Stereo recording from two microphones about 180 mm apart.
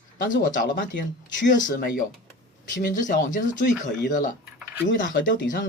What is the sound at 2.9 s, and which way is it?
Speech, 45° left (ahead or behind).